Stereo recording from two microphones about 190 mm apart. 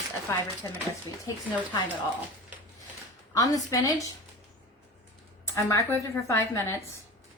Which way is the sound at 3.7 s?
15° left (ahead or behind).